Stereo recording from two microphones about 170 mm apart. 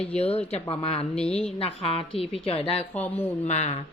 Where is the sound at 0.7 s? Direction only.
35° left (ahead or behind).